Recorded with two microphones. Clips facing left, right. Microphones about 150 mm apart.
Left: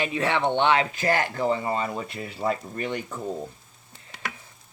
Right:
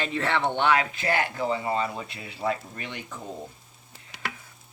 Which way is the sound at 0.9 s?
40° left (ahead or behind).